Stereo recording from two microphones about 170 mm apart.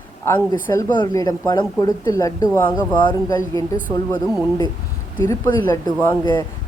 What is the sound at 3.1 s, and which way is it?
Speech, 20° left (ahead or behind).